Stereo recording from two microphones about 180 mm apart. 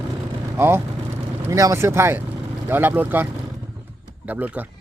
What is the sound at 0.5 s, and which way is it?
Speech, 15° right (ahead or behind).